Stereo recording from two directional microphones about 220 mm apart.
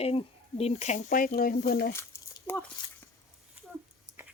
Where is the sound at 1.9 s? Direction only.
10° left (ahead or behind).